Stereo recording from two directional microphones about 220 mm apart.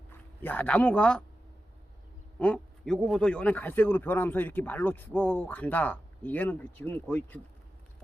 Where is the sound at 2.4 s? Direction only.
5° left (ahead or behind).